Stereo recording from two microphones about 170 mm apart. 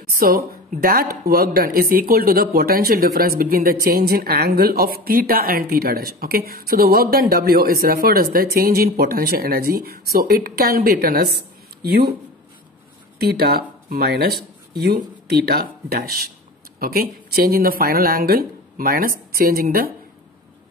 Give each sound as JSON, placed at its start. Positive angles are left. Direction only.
{"t": 0.1, "sound": "a woman's voice", "side_deg": -60}
{"t": 13.2, "sound": "speech", "side_deg": -70}